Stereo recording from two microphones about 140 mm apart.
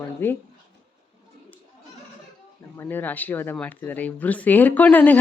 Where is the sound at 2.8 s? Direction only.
15° left (ahead or behind).